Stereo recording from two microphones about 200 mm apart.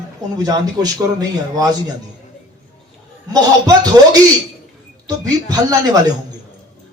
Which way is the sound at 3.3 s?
20° right (ahead or behind).